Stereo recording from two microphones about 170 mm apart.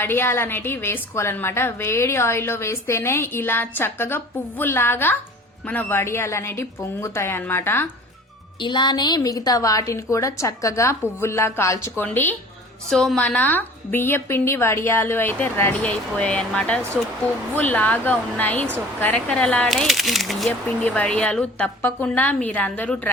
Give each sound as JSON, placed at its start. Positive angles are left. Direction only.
{"t": 0.0, "sound": "a woman's voice", "side_deg": 15}
{"t": 8.6, "sound": "a woman's voice", "side_deg": 25}